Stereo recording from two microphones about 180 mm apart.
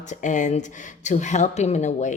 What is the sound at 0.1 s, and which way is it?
Speech, 45° left (ahead or behind).